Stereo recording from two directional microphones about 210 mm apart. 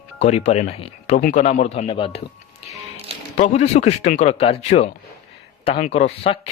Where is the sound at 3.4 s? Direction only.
30° left (ahead or behind).